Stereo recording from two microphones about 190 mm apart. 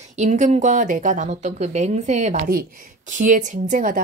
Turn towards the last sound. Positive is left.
turn(degrees=-45)  # may be behind; listen again after turning